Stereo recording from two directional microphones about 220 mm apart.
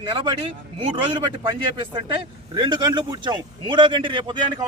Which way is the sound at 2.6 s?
20° right (ahead or behind).